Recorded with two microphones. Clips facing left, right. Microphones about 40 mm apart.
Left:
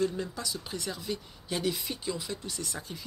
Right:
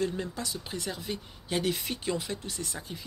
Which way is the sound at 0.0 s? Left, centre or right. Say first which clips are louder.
Left 1 dB; right.